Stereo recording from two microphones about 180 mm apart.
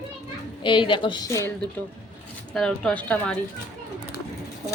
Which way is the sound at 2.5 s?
5° left (ahead or behind).